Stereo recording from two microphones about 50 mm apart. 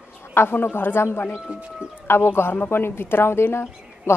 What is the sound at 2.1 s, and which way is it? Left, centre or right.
Speech, left.